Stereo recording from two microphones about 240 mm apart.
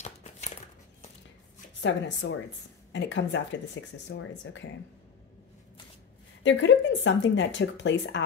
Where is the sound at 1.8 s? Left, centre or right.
Left.